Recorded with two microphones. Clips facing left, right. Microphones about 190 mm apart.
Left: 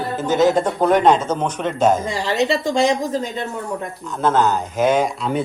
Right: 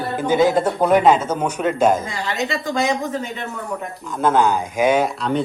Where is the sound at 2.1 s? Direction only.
35° left (ahead or behind).